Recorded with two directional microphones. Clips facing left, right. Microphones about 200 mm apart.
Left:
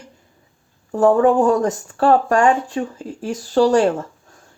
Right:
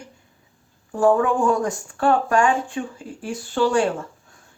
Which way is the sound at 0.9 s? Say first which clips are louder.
Left 4 dB; 40° left (ahead or behind).